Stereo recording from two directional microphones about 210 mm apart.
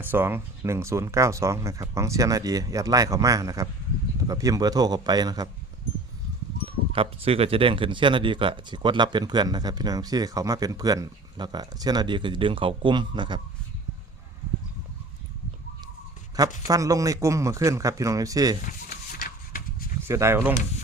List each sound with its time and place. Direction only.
0.0 s speech: 10° right (ahead or behind)
6.7 s speech: 25° right (ahead or behind)
16.6 s speech: 15° right (ahead or behind)
18.6 s rub: 45° left (ahead or behind)
20.0 s speech: 10° right (ahead or behind)